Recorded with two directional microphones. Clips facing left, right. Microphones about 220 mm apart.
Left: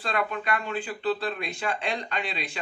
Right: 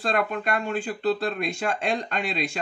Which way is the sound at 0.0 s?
45° right (ahead or behind).